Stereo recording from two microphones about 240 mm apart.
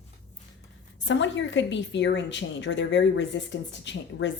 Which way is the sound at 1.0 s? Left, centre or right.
Left.